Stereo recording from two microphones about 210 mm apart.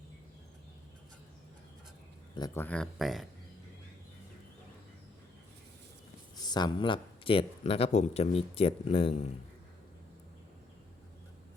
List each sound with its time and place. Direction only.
2.3 s speech: 20° left (ahead or behind)
2.6 s speech: 5° left (ahead or behind)
6.4 s speech: 20° left (ahead or behind)